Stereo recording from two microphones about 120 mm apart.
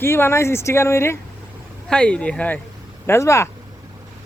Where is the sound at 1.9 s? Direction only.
10° left (ahead or behind).